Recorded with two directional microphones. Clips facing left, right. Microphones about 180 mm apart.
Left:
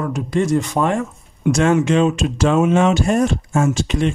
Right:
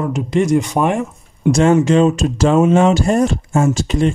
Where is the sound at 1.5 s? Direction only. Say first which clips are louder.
Right 3 dB; 30° right (ahead or behind).